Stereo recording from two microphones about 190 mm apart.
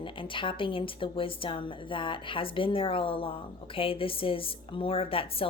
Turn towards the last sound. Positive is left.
turn(degrees=30)  # may be behind; listen again after turning